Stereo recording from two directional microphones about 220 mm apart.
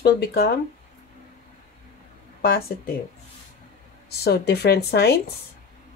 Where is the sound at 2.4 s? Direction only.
45° left (ahead or behind).